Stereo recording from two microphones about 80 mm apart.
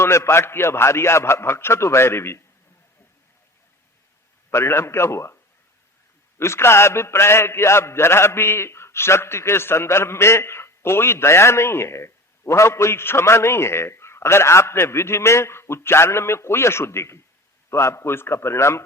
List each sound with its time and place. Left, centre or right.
0.0 s a man's voice: left
4.5 s a man's voice: left
6.4 s a man's voice: left